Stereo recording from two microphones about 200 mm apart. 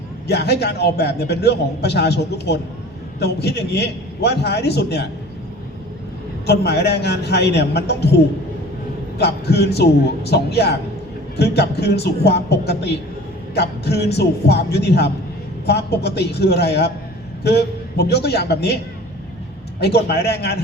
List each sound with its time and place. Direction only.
0.3 s a man's voice: 55° left (ahead or behind)
6.4 s a man's voice: 55° left (ahead or behind)
19.8 s a man's voice: 55° left (ahead or behind)